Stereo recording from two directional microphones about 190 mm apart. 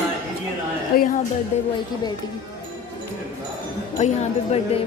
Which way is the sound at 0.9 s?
50° left (ahead or behind).